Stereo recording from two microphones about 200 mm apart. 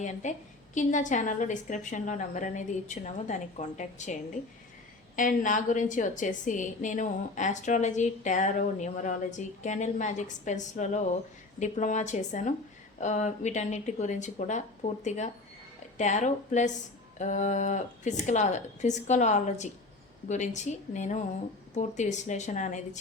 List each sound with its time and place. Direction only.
0.0 s a woman's voice: 35° left (ahead or behind)